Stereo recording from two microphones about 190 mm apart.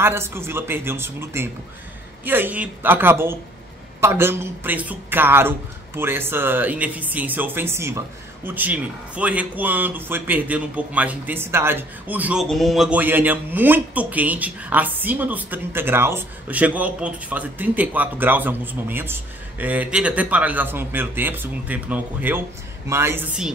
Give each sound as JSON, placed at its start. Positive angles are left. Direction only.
{"t": 0.0, "sound": "speech", "side_deg": -10}